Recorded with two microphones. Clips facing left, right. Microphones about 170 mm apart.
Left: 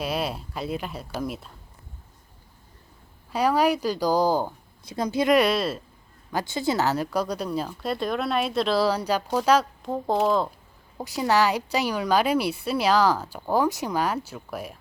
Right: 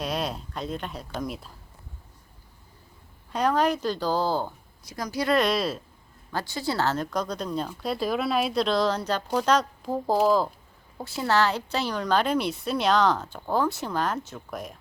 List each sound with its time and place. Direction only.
0.0 s speech: 5° left (ahead or behind)
3.3 s a woman's voice: 10° left (ahead or behind)
4.9 s speech: 25° left (ahead or behind)
5.4 s speech: 5° left (ahead or behind)
6.5 s a woman's voice: 20° left (ahead or behind); by 10.5 s centre (ahead or behind)
11.2 s a woman's voice: 15° left (ahead or behind)